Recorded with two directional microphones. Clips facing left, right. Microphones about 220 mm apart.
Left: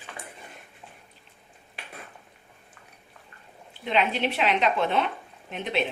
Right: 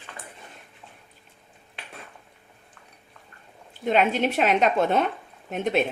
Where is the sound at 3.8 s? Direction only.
45° right (ahead or behind).